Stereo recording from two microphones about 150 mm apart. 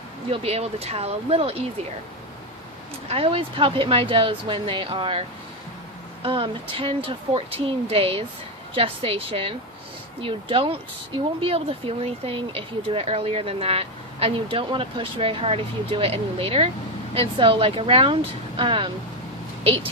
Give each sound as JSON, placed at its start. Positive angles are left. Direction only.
{"t": 0.3, "sound": "speech", "side_deg": -45}
{"t": 3.1, "sound": "speech", "side_deg": -40}
{"t": 6.2, "sound": "speech", "side_deg": -35}